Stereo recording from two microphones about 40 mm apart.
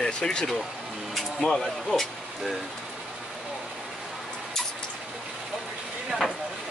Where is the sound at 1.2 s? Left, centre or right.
Centre.